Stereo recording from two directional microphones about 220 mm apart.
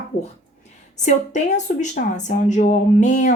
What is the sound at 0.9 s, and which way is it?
Speech, 35° left (ahead or behind).